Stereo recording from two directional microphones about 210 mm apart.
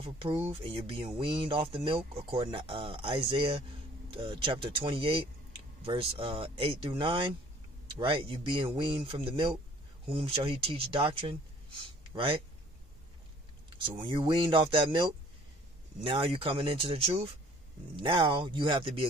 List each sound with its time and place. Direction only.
0.0 s speech: 25° right (ahead or behind)
12.0 s a sound: 25° right (ahead or behind)
13.7 s speech: 25° right (ahead or behind)